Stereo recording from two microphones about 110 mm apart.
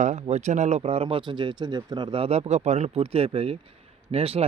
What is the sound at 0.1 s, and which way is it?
A man's voice, 90° right.